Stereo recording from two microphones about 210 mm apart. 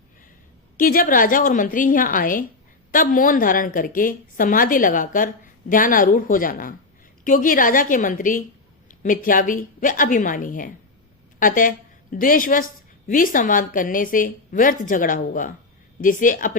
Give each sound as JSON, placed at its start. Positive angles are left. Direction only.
{"t": 0.8, "sound": "a woman's voice", "side_deg": 40}